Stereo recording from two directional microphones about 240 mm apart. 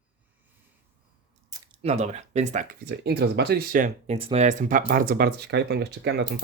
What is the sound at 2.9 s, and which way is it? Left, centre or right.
Speech, right.